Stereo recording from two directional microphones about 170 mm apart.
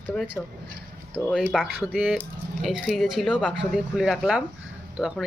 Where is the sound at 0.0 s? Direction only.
5° left (ahead or behind).